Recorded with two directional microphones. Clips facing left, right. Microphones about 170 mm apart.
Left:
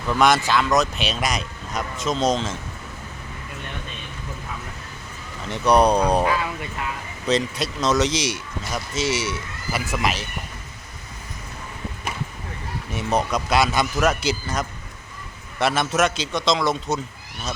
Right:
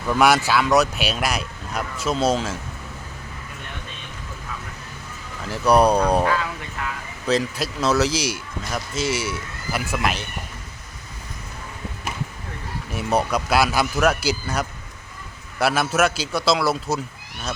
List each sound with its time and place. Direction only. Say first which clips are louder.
0.1 s speech: right 1 dB; 10° right (ahead or behind)
5.5 s speech: even; 5° right (ahead or behind)
6.2 s speech: even; 15° left (ahead or behind)
7.3 s speech: even; 5° right (ahead or behind)
12.9 s speech: right 1 dB; 5° right (ahead or behind)